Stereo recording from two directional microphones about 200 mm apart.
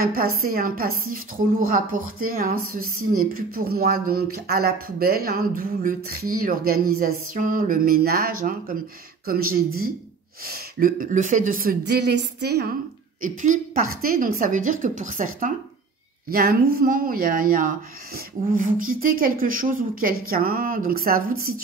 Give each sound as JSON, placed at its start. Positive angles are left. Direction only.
{"t": 0.0, "sound": "speech", "side_deg": -50}
{"t": 13.2, "sound": "a woman's voice", "side_deg": -40}